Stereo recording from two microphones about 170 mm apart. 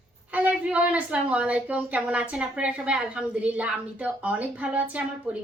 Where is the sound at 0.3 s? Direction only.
10° right (ahead or behind).